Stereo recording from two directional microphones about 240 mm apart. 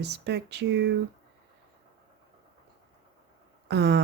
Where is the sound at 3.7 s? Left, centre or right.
Right.